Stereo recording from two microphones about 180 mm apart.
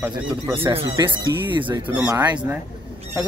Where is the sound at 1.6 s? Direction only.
25° right (ahead or behind).